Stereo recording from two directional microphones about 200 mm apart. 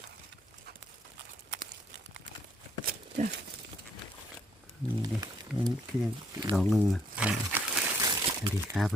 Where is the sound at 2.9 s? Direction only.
35° right (ahead or behind).